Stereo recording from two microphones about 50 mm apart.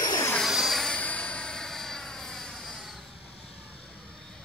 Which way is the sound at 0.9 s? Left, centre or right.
Left.